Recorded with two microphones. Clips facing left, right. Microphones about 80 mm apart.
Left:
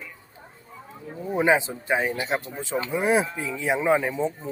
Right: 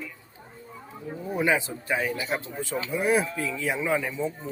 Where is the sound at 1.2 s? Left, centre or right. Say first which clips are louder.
Left 4 dB; left.